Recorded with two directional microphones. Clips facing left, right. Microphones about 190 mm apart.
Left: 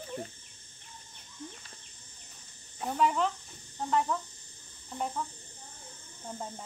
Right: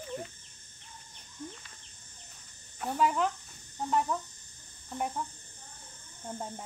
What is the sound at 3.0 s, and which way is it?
Speech, 5° right (ahead or behind).